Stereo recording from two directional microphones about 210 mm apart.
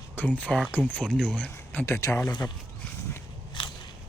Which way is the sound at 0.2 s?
5° left (ahead or behind).